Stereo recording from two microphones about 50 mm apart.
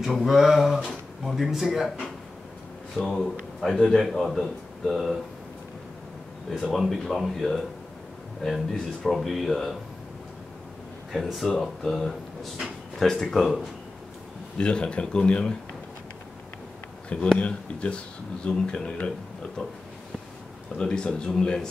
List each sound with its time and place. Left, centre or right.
0.0 s a man's voice: centre
3.1 s a man's voice: centre
6.5 s a man's voice: centre
11.1 s speech: centre
14.6 s speech: centre
17.1 s speech: left
20.7 s speech: centre